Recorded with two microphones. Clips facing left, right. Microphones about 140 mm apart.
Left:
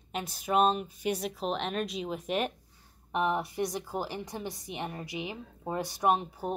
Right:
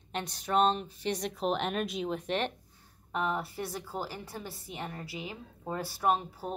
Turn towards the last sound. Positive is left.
turn(degrees=20)  # may be behind; listen again after turning